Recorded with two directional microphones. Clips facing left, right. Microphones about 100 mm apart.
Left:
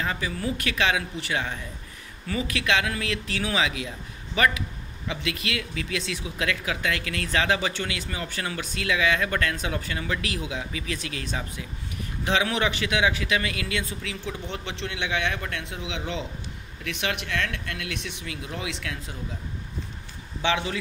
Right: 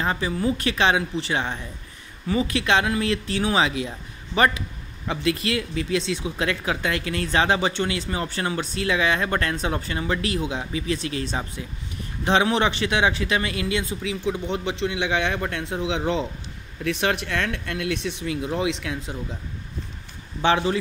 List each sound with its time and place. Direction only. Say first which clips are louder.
0.0 s a man's voice: right 5 dB; 30° right (ahead or behind); by 15.0 s 15° right (ahead or behind)
15.0 s a man's voice: even; 30° right (ahead or behind)
20.4 s a man's voice: right 6 dB; 35° right (ahead or behind)